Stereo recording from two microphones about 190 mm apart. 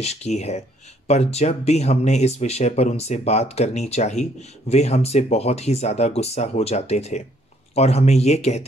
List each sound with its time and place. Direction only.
0.0 s speech: 35° left (ahead or behind)